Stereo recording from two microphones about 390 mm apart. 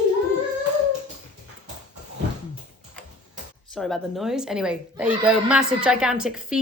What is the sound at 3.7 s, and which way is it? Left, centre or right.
A woman's voice, centre.